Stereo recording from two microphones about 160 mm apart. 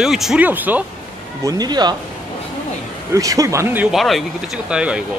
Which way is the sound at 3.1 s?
20° right (ahead or behind).